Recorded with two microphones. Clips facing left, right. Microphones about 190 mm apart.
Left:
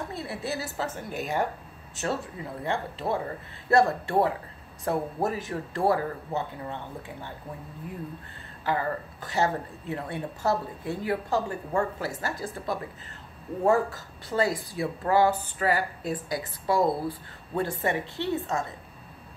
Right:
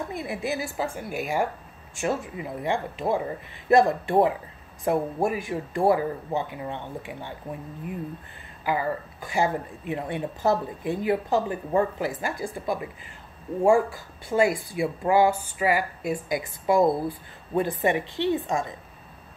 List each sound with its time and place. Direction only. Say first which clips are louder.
0.1 s speech: right 3 dB; 15° right (ahead or behind)
8.6 s speech: right 2 dB; 10° right (ahead or behind)